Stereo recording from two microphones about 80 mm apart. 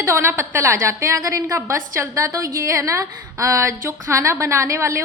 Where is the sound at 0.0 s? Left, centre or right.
Right.